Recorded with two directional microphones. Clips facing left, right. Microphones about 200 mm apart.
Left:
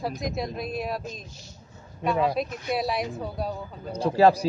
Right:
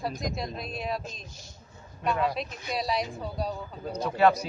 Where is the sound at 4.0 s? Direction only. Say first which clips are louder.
Left 4 dB; 35° left (ahead or behind).